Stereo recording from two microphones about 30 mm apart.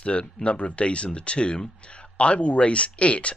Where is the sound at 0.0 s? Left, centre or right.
Left.